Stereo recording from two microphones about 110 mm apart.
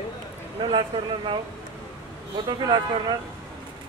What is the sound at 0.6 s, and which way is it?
Speech, 45° right (ahead or behind).